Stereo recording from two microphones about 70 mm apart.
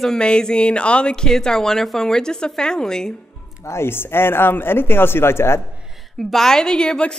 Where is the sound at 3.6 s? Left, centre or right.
Left.